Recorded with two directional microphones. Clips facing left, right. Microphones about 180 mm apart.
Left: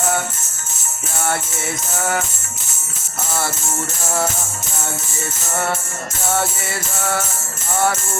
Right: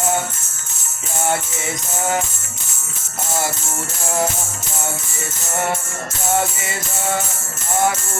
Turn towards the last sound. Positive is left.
turn(degrees=-15)  # may be behind; listen again after turning